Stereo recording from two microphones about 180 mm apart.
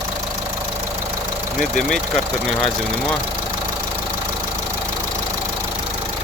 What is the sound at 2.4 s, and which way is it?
Speech, 5° left (ahead or behind).